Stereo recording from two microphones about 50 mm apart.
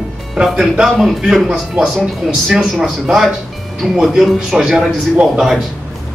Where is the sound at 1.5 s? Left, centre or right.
Centre.